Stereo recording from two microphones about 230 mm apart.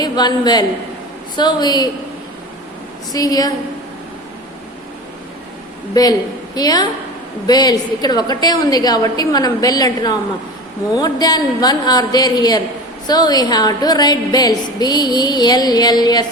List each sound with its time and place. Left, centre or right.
0.0 s a woman's voice: centre
3.1 s a woman's voice: centre
5.9 s a woman's voice: centre